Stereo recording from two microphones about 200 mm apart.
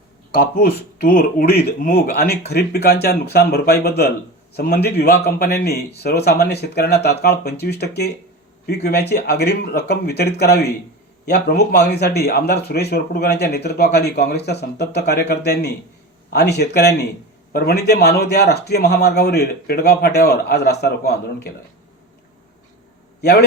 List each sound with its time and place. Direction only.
0.3 s a man's voice: 45° left (ahead or behind)